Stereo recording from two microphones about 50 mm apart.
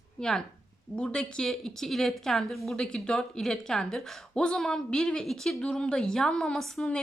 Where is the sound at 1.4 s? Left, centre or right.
Centre.